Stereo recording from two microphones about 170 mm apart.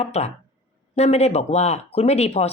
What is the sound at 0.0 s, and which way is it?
Speech, 40° left (ahead or behind).